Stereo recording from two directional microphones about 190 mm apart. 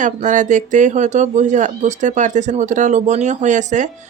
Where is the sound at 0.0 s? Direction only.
40° right (ahead or behind).